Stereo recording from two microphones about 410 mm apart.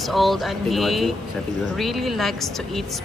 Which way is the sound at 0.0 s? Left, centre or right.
Centre.